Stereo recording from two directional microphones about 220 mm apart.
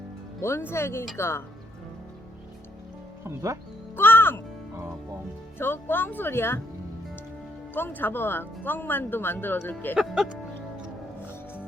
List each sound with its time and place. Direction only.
0.4 s speech: 10° left (ahead or behind)
3.2 s speech: 15° right (ahead or behind)
3.9 s music: 10° left (ahead or behind)
5.5 s speech: 10° left (ahead or behind)
7.7 s speech: 10° left (ahead or behind)
9.9 s speech: centre (ahead or behind)